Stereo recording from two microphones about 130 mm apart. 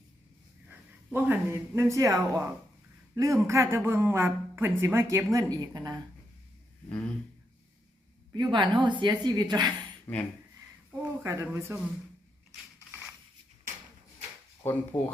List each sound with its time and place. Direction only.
0.7 s speech: 15° right (ahead or behind)
8.3 s a woman's voice: 35° right (ahead or behind)
10.1 s speech: 15° left (ahead or behind)
11.0 s speech: 20° right (ahead or behind)
14.6 s speech: 20° left (ahead or behind)